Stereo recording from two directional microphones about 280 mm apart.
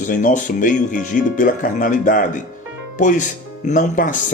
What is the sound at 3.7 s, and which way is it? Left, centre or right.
Speech, left.